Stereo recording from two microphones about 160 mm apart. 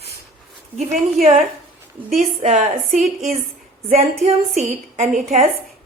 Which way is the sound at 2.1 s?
45° right (ahead or behind).